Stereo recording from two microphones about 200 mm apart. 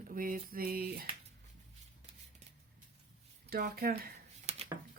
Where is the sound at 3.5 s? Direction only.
45° right (ahead or behind).